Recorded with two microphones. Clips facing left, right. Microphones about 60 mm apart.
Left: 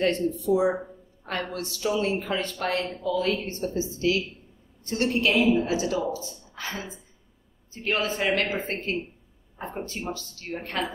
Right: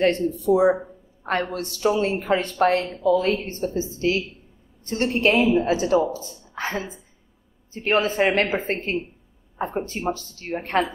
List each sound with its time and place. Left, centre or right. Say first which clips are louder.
0.0 s a woman's voice: right 4 dB; right